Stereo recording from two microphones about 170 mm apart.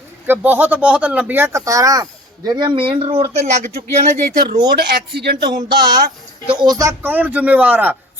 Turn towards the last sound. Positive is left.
turn(degrees=-10)  # may be behind; listen again after turning